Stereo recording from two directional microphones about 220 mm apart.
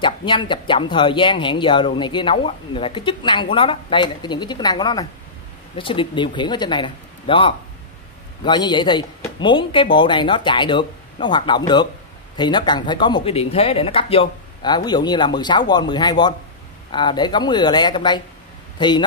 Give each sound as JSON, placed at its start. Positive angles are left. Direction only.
{"t": 0.0, "sound": "speech", "side_deg": 20}